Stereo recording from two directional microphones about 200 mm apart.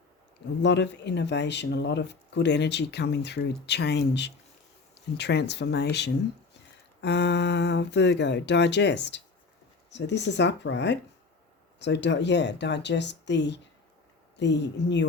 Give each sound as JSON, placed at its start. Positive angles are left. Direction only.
{"t": 0.6, "sound": "speech", "side_deg": 60}